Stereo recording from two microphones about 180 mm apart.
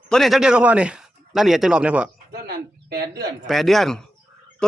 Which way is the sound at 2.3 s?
60° right (ahead or behind).